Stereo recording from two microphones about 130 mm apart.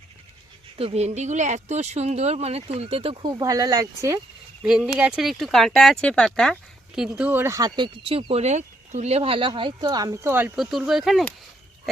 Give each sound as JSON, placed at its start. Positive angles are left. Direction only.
{"t": 0.8, "sound": "speech", "side_deg": -50}
{"t": 4.6, "sound": "speech", "side_deg": -10}
{"t": 7.2, "sound": "speech", "side_deg": -15}
{"t": 7.8, "sound": "speech", "side_deg": -45}
{"t": 10.6, "sound": "speech", "side_deg": -5}